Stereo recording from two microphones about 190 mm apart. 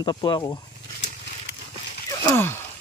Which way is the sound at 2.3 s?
10° left (ahead or behind).